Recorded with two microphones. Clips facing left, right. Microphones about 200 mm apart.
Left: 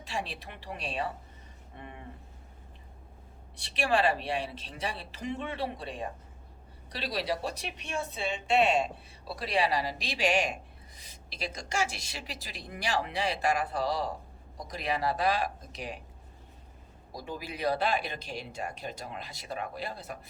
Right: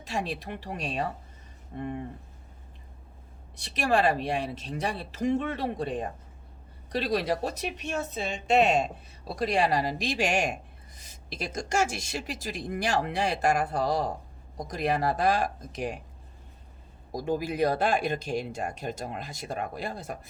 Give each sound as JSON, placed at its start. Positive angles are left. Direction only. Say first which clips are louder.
{"t": 0.0, "sound": "a woman's voice", "louder": "right 5 dB", "side_deg": -45}
{"t": 3.5, "sound": "a woman's voice", "louder": "right 3 dB", "side_deg": -45}
{"t": 17.1, "sound": "a woman's voice", "louder": "right 10 dB", "side_deg": -45}